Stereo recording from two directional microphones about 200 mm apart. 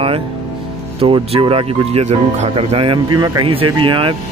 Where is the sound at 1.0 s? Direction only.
25° right (ahead or behind).